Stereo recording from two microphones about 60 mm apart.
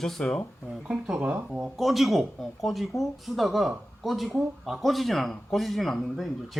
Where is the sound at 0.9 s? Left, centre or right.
Centre.